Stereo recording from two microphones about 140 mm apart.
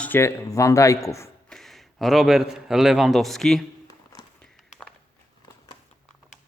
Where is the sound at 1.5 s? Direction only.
Centre (ahead or behind).